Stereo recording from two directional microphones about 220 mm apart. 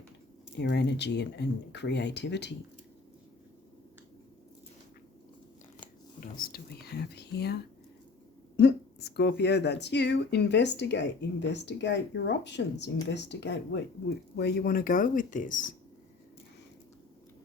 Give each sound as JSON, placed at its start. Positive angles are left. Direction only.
{"t": 0.6, "sound": "speech", "side_deg": 50}
{"t": 6.1, "sound": "speech", "side_deg": 40}